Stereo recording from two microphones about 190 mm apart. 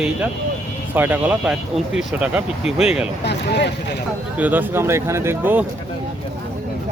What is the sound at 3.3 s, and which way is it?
Speech, 65° left (ahead or behind).